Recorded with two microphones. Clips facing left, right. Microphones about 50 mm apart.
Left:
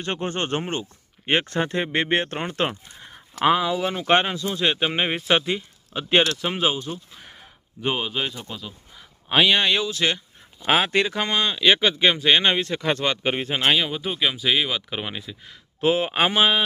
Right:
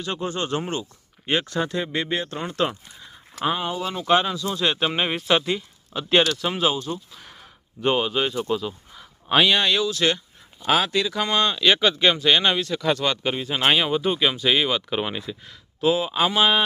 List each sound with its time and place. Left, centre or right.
0.0 s speech: left
2.4 s speech: left
3.4 s speech: left
3.8 s speech: left
4.3 s speech: left
7.8 s speech: centre
9.6 s speech: left
10.9 s speech: left
11.3 s speech: centre; by 13.4 s left
13.6 s speech: centre
15.8 s speech: left